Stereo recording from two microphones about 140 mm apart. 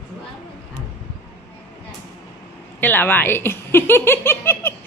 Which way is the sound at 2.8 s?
15° left (ahead or behind).